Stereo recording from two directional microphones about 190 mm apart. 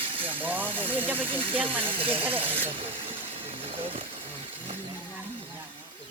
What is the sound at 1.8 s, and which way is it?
Speech, 30° right (ahead or behind).